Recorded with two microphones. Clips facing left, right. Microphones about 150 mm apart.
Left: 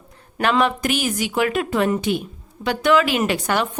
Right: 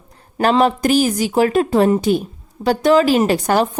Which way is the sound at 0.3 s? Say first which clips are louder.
Right 4 dB; 35° right (ahead or behind).